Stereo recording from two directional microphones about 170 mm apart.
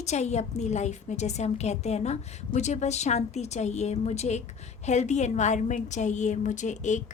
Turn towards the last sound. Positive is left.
turn(degrees=45)  # may be behind; listen again after turning